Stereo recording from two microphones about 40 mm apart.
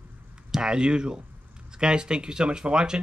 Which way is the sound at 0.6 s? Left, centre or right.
Right.